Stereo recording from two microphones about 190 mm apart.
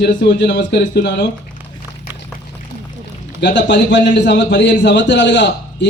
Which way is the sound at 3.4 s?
65° left (ahead or behind).